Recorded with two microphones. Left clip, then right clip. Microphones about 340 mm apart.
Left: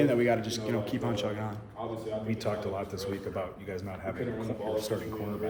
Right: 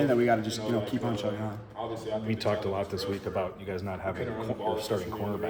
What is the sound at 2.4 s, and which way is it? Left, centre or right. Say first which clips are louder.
A man's voice: right 6 dB; right.